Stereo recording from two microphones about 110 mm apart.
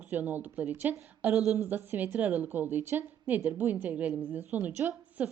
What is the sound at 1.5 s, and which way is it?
A woman's voice, 20° right (ahead or behind).